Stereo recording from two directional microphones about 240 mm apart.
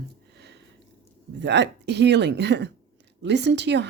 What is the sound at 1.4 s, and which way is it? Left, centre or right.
Speech, right.